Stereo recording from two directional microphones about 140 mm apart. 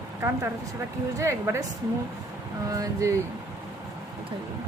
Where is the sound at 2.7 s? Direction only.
25° right (ahead or behind).